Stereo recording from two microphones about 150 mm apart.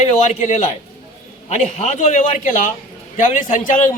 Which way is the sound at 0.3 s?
55° left (ahead or behind).